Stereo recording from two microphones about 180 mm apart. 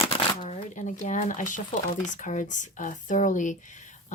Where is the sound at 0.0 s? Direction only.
40° left (ahead or behind).